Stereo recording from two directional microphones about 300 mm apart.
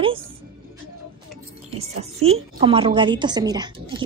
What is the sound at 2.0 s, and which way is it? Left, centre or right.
A woman's voice, centre.